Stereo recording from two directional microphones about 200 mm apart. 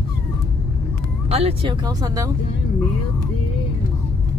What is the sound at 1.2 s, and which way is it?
Speech, 30° right (ahead or behind).